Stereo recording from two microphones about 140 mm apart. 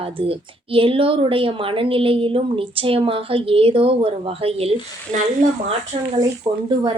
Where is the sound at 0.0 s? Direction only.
40° right (ahead or behind).